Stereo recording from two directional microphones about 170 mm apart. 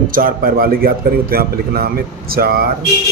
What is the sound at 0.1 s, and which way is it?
A man's voice, 55° right (ahead or behind).